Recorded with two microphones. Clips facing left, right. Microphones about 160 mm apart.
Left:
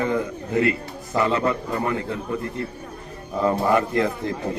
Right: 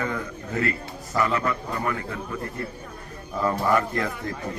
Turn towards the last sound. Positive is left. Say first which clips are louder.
# left 5 dB
turn(degrees=20)  # may be behind; listen again after turning